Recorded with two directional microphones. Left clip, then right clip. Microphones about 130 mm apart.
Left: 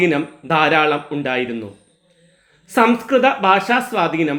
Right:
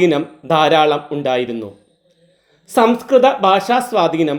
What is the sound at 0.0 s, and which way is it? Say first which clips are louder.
Speech: right 3 dB; 25° right (ahead or behind).